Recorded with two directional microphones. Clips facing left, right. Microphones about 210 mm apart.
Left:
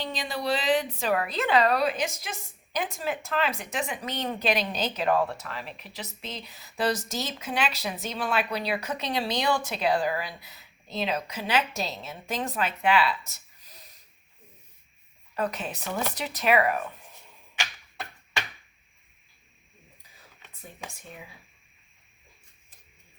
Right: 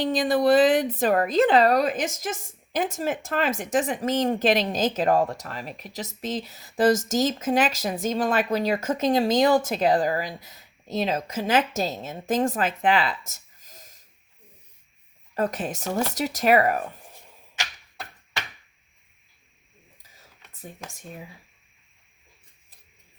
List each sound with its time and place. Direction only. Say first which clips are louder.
0.0 s speech: right 10 dB; 50° right (ahead or behind)
13.6 s wheeze: right 4 dB; 45° right (ahead or behind)
15.4 s speech: right 4 dB; 45° right (ahead or behind)